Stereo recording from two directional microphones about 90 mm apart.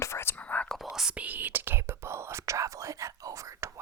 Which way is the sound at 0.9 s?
10° right (ahead or behind).